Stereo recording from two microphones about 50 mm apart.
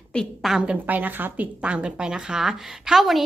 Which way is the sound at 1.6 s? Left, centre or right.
Right.